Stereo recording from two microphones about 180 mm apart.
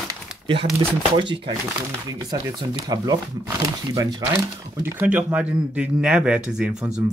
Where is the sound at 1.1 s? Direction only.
25° right (ahead or behind).